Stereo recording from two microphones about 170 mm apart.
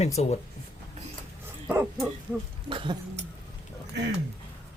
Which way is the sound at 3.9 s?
90° right.